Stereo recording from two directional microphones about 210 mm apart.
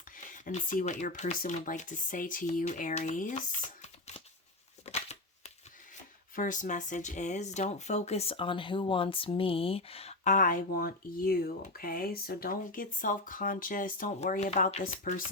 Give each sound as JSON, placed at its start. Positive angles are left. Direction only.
{"t": 0.3, "sound": "speech", "side_deg": 40}
{"t": 4.9, "sound": "a sound", "side_deg": 30}
{"t": 6.3, "sound": "speech", "side_deg": 40}